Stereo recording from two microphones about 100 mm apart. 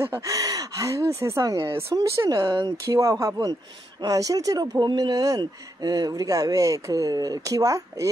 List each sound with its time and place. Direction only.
0.2 s speech: 35° right (ahead or behind)
2.8 s speech: 35° right (ahead or behind)